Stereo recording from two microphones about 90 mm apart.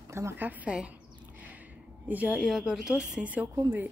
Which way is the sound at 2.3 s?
5° right (ahead or behind).